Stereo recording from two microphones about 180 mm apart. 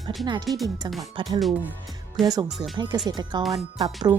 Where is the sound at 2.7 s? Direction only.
25° right (ahead or behind).